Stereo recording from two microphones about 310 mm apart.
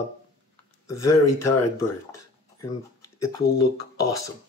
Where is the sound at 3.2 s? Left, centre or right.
Left.